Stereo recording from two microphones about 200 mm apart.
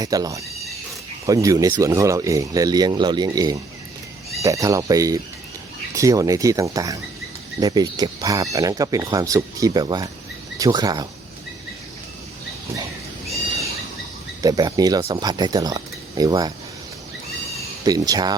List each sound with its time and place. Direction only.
0.0 s speech: 20° right (ahead or behind)
14.4 s speech: 20° right (ahead or behind)
17.8 s speech: 20° right (ahead or behind)